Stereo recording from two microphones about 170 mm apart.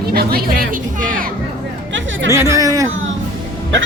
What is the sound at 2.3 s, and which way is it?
Speech, 15° right (ahead or behind).